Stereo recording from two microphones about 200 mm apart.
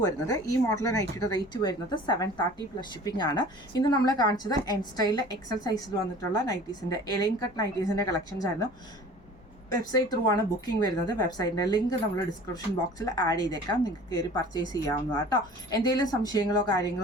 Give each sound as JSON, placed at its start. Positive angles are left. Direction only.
{"t": 0.0, "sound": "a woman's voice", "side_deg": 15}
{"t": 9.9, "sound": "a woman's voice", "side_deg": 20}